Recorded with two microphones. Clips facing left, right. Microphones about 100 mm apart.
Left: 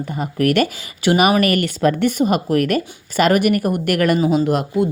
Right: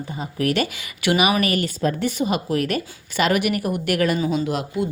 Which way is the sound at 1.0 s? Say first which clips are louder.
Left 4 dB; 40° left (ahead or behind).